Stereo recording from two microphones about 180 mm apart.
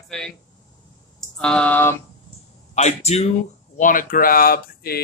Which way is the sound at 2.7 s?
35° left (ahead or behind).